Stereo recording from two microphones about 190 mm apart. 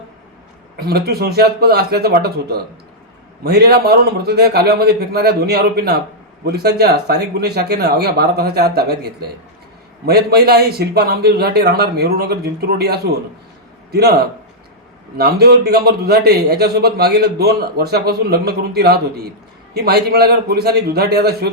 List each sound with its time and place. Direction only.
0.8 s a man's voice: 55° right (ahead or behind)
15.2 s a man's voice: 55° right (ahead or behind)